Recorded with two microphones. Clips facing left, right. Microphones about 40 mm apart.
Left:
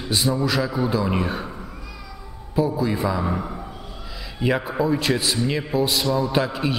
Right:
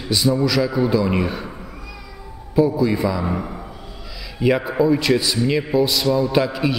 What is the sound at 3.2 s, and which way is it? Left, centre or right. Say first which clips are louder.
A man's voice: right 1 dB; centre.